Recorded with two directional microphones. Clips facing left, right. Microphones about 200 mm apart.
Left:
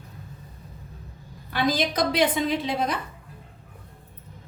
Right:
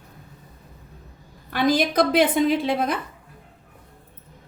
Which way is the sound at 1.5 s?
55° right (ahead or behind).